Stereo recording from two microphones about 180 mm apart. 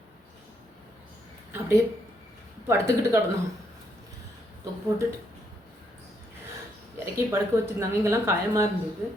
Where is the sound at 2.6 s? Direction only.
15° right (ahead or behind).